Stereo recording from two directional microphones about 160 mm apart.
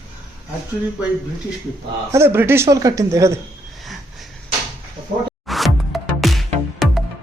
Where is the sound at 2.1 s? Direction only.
15° right (ahead or behind).